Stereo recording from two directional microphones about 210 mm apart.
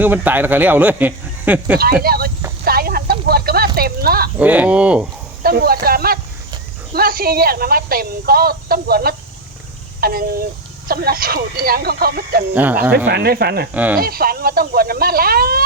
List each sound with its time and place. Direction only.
0.0 s speech: 10° right (ahead or behind)
1.8 s speech: 45° right (ahead or behind)
2.6 s a sound: 45° right (ahead or behind)
4.4 s speech: 5° right (ahead or behind)
5.4 s speech: 45° right (ahead or behind)
12.5 s speech: 10° right (ahead or behind)
13.1 s speech: 50° right (ahead or behind)
13.7 s speech: 10° right (ahead or behind)
14.0 s speech: 45° right (ahead or behind)